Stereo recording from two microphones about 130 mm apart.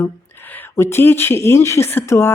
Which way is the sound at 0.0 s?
15° left (ahead or behind).